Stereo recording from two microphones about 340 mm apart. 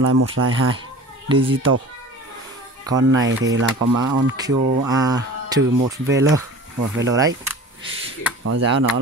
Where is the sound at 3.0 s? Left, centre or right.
Right.